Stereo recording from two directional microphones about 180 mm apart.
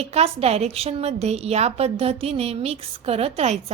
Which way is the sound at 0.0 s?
35° right (ahead or behind).